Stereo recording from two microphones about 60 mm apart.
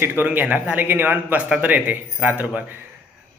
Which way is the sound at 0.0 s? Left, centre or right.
Right.